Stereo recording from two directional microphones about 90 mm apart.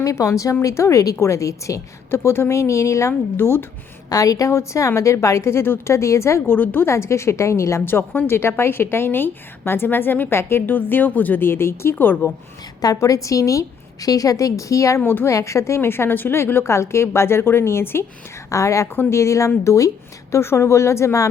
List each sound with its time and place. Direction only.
0.0 s a woman's voice: 35° left (ahead or behind)
4.1 s a woman's voice: 40° left (ahead or behind); by 12.3 s 20° left (ahead or behind)
12.8 s a woman's voice: 40° left (ahead or behind)
15.0 s a woman's voice: 20° left (ahead or behind)
15.3 s a woman's voice: 35° left (ahead or behind)